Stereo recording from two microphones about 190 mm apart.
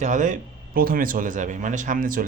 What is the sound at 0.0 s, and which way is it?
Speech, 40° right (ahead or behind).